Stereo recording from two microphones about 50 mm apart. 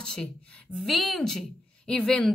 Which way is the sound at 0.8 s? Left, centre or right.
Centre.